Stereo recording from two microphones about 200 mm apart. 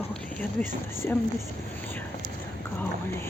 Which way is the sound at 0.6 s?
10° left (ahead or behind).